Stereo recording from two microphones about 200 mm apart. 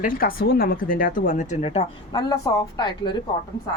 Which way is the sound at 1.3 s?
35° left (ahead or behind).